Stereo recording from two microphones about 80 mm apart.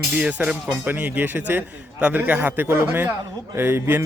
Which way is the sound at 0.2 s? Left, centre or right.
Centre.